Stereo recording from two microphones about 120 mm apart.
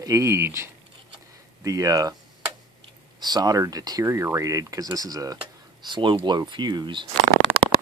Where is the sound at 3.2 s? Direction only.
35° right (ahead or behind).